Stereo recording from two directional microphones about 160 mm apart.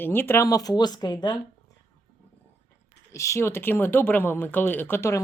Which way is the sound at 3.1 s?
20° left (ahead or behind).